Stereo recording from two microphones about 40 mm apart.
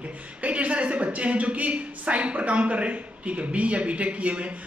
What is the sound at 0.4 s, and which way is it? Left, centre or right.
A woman's voice, right.